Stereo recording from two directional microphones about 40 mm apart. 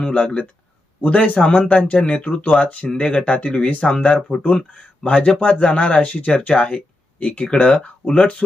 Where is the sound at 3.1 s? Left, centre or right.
Left.